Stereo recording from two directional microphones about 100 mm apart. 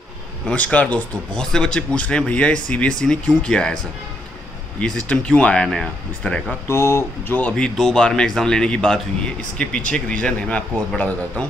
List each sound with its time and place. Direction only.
0.5 s speech: 15° left (ahead or behind)
6.7 s speech: 25° left (ahead or behind); by 11.4 s 10° left (ahead or behind)